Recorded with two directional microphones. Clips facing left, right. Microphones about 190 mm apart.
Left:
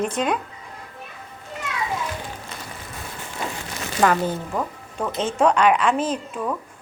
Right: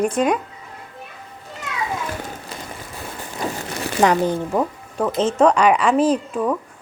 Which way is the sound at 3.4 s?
40° right (ahead or behind).